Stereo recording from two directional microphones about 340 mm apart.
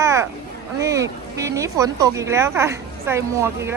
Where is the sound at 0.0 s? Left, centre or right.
Centre.